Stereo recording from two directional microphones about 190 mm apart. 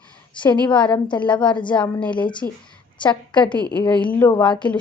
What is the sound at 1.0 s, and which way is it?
Speech, 25° left (ahead or behind).